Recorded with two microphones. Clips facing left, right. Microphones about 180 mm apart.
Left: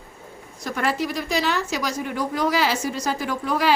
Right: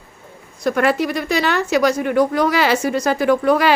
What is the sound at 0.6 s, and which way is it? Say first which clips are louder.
Speech: right 8 dB; 65° right (ahead or behind).